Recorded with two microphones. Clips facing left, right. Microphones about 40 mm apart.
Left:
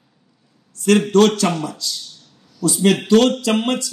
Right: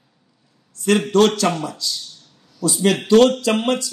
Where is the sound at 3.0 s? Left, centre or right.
Left.